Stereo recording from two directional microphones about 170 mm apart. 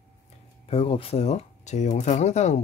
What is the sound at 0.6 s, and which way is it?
Speech, 35° left (ahead or behind).